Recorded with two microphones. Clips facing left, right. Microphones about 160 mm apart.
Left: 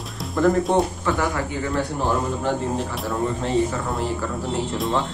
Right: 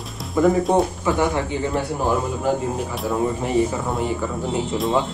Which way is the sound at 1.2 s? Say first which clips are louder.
Right 3 dB; 20° right (ahead or behind).